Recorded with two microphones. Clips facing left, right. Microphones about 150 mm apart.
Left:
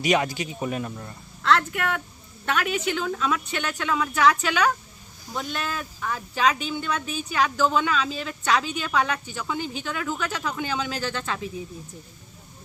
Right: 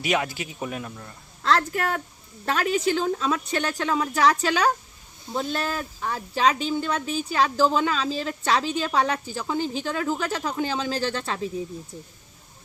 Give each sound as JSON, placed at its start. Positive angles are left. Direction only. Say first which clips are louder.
{"t": 0.0, "sound": "speech", "louder": "left 3 dB", "side_deg": 0}
{"t": 1.5, "sound": "speech", "louder": "even", "side_deg": -35}